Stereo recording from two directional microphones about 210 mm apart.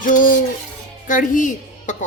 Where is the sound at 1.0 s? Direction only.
40° left (ahead or behind).